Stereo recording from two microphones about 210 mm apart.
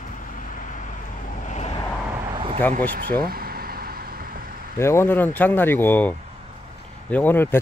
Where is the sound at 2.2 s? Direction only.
25° right (ahead or behind).